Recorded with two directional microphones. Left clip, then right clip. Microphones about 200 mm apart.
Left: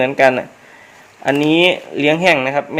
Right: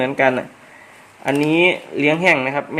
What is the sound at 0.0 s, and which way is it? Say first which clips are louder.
Speech: left 4 dB; 5° left (ahead or behind).